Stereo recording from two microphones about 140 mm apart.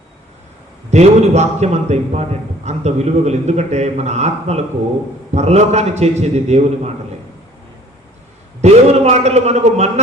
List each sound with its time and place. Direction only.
0.9 s a man's voice: 55° right (ahead or behind)
8.6 s a man's voice: 50° right (ahead or behind)